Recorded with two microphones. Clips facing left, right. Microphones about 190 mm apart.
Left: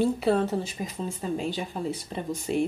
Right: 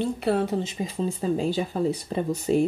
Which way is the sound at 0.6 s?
30° right (ahead or behind).